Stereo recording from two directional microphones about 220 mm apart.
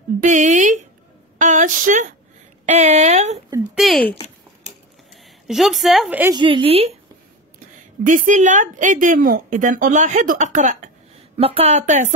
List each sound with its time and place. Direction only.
0.2 s a woman's voice: 35° right (ahead or behind)
1.4 s a sound: 35° right (ahead or behind)
2.6 s a woman's voice: 30° right (ahead or behind)
3.7 s speech: centre (ahead or behind)
5.1 s a woman's voice: centre (ahead or behind)
6.3 s speech: 25° right (ahead or behind)
8.0 s a woman's voice: 35° right (ahead or behind)